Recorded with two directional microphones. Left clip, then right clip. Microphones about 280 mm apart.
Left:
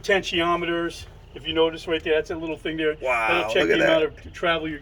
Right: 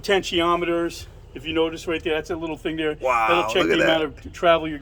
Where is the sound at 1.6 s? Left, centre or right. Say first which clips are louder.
Left 1 dB; right.